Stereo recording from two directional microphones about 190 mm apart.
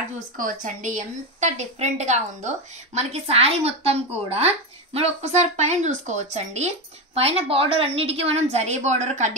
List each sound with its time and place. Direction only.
0.4 s a woman's voice: 45° right (ahead or behind)